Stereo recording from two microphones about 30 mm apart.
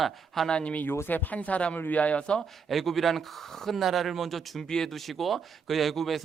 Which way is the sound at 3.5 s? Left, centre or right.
Centre.